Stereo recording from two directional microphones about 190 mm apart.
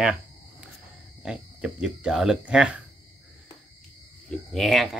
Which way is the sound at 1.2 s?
5° right (ahead or behind).